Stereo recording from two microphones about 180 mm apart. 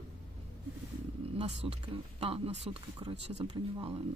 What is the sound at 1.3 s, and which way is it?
Speech, 30° right (ahead or behind).